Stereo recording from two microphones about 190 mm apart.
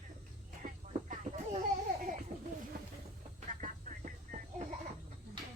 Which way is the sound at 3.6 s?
45° right (ahead or behind).